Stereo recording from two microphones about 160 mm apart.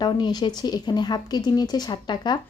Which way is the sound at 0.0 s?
25° left (ahead or behind).